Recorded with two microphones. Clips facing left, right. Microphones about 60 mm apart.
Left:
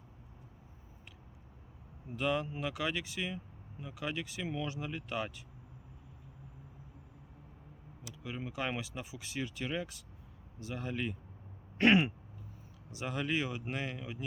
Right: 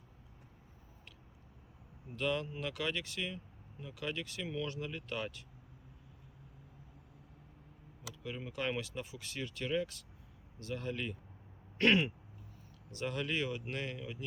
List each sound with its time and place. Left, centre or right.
2.1 s speech: centre
8.2 s speech: centre